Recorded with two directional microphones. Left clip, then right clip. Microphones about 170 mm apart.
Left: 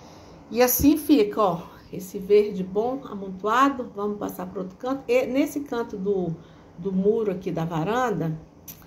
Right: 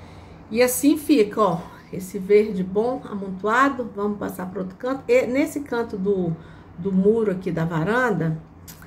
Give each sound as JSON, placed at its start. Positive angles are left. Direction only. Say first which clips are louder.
{"t": 0.5, "sound": "a woman's voice", "louder": "right 1 dB", "side_deg": 0}